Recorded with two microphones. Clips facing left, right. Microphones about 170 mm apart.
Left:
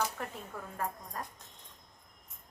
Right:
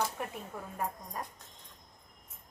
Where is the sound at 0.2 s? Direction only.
15° right (ahead or behind).